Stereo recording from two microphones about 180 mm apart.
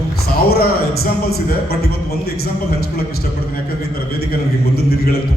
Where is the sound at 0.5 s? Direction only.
60° left (ahead or behind).